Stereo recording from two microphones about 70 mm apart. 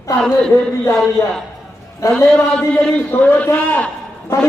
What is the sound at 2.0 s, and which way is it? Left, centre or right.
Speech, left.